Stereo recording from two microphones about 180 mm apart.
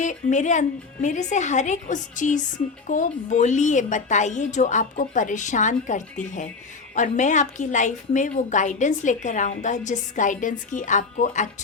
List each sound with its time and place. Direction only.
0.0 s a woman's voice: 45° left (ahead or behind)